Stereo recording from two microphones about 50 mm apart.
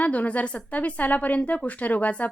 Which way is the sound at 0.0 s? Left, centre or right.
Left.